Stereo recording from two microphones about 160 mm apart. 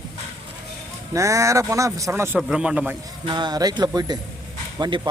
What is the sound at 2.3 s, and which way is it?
Speech, 5° right (ahead or behind).